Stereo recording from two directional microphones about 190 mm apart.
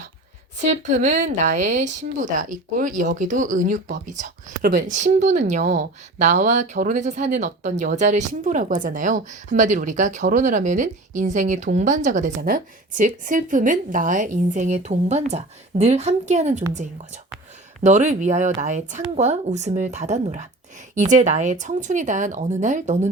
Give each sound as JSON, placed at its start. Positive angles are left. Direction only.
{"t": 0.7, "sound": "speech", "side_deg": -40}
{"t": 17.8, "sound": "speech", "side_deg": -40}